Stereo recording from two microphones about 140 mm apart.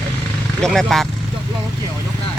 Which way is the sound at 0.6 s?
Centre (ahead or behind).